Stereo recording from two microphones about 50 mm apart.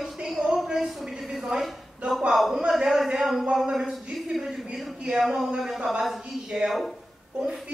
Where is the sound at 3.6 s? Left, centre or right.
Centre.